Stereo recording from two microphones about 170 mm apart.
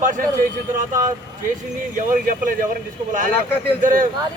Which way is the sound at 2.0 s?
50° right (ahead or behind).